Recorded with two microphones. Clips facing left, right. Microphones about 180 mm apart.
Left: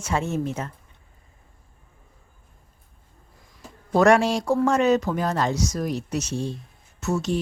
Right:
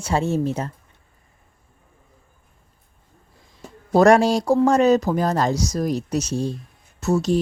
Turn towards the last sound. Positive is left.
turn(degrees=-35)  # may be behind; listen again after turning